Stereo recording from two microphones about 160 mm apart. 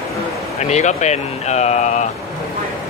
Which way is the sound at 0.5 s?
45° left (ahead or behind).